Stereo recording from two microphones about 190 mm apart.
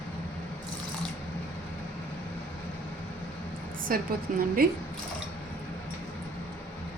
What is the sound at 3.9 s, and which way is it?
Speech, 50° right (ahead or behind).